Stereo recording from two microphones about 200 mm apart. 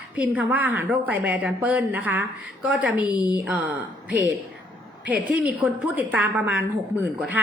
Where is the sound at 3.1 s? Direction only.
20° left (ahead or behind).